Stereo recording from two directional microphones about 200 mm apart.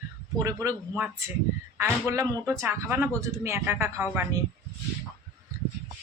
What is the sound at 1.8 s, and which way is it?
Speech, 15° right (ahead or behind).